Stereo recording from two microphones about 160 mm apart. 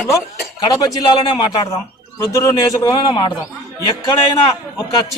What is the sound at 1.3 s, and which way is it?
A man's voice, 25° left (ahead or behind).